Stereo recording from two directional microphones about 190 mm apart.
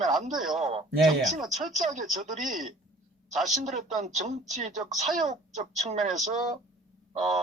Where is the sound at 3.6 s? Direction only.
40° right (ahead or behind).